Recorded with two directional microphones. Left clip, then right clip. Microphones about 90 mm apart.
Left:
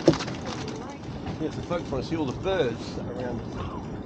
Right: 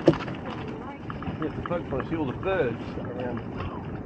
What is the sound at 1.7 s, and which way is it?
Speech, 30° left (ahead or behind).